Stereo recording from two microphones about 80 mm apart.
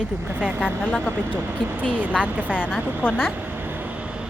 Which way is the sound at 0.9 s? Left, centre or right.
Left.